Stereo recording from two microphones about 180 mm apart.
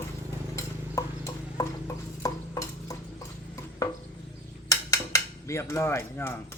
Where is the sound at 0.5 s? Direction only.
15° left (ahead or behind).